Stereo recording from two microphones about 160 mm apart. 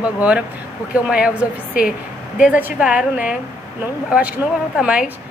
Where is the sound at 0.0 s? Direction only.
10° right (ahead or behind).